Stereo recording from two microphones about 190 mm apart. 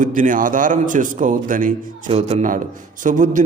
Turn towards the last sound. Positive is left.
turn(degrees=-40)  # may be behind; listen again after turning